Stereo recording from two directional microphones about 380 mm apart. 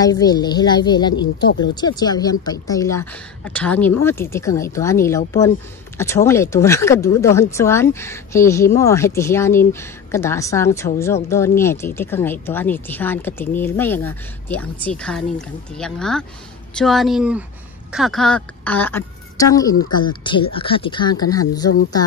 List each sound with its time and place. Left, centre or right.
0.0 s speech: centre
1.1 s speech: left
1.6 s a woman's voice: centre